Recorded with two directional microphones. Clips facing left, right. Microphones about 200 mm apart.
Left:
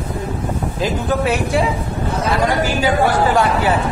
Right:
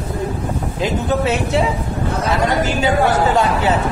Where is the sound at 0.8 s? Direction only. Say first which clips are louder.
Right 1 dB; 25° right (ahead or behind).